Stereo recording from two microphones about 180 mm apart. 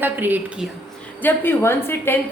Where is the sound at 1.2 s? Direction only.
10° left (ahead or behind).